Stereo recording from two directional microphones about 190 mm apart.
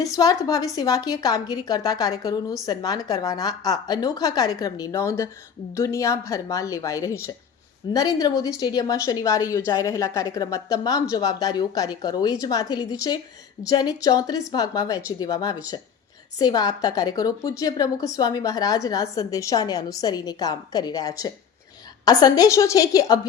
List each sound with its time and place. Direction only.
0.0 s a woman's voice: 20° left (ahead or behind)